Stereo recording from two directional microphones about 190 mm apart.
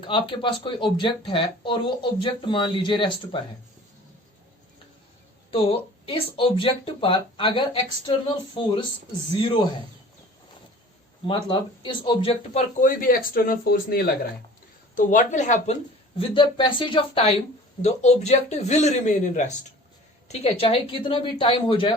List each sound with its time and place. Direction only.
0.0 s speech: 25° left (ahead or behind)
5.5 s speech: 30° left (ahead or behind)
11.3 s speech: 25° left (ahead or behind)
12.8 s speech: 50° left (ahead or behind)
14.9 s speech: 40° left (ahead or behind)
16.1 s speech: 30° left (ahead or behind)